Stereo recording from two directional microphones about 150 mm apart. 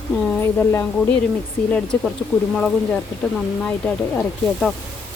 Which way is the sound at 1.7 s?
5° left (ahead or behind).